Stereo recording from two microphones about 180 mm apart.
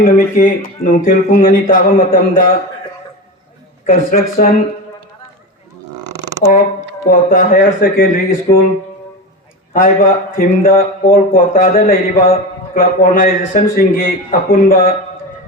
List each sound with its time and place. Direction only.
0.0 s speech: 50° left (ahead or behind)
3.8 s speech: 50° left (ahead or behind)
6.4 s speech: 40° left (ahead or behind)
9.7 s speech: 50° left (ahead or behind)